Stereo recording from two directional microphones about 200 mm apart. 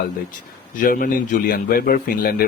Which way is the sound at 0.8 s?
45° left (ahead or behind).